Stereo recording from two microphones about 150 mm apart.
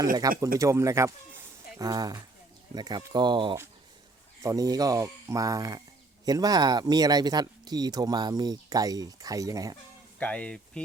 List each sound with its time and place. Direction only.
0.2 s speech: 20° right (ahead or behind)
10.2 s speech: 10° left (ahead or behind)